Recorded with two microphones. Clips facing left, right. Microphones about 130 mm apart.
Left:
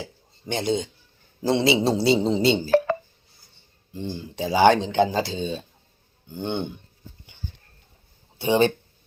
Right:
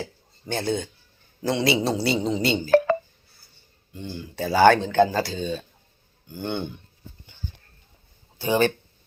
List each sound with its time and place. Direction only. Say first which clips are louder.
0.0 s a sound: right 2 dB; 20° left (ahead or behind)
1.4 s speech: left 2 dB; 25° left (ahead or behind)
3.9 s speech: left 2 dB; 30° left (ahead or behind)
8.4 s speech: left 2 dB; 25° left (ahead or behind)